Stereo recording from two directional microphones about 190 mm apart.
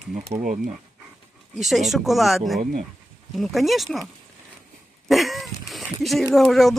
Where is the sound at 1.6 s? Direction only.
Centre (ahead or behind).